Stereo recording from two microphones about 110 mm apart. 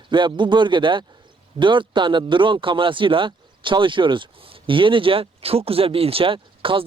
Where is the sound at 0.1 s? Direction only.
45° right (ahead or behind).